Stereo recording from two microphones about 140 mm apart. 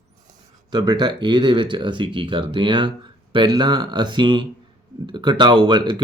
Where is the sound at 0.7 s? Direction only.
30° right (ahead or behind).